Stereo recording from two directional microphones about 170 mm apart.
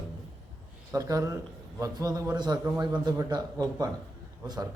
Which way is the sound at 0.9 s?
20° right (ahead or behind).